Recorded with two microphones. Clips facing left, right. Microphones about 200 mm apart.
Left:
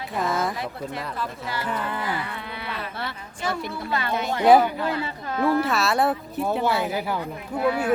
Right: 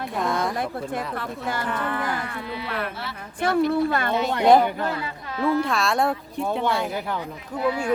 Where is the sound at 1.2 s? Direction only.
55° right (ahead or behind).